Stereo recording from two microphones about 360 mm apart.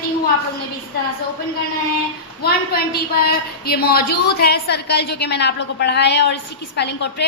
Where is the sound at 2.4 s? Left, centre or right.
Left.